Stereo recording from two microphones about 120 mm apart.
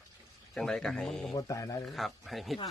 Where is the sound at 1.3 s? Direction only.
30° left (ahead or behind).